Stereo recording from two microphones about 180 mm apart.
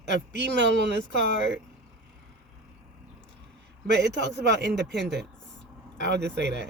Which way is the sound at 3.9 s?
75° right (ahead or behind).